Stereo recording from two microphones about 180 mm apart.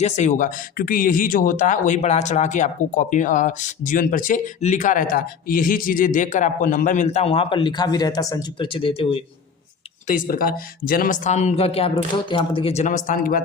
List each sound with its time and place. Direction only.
0.0 s speech: 45° left (ahead or behind)
10.1 s speech: 50° left (ahead or behind)